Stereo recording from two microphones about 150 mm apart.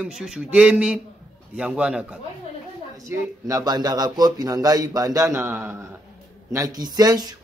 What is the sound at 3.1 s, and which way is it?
Speech, 20° right (ahead or behind).